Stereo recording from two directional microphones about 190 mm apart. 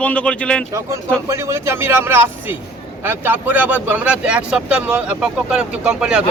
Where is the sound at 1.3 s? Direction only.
15° right (ahead or behind).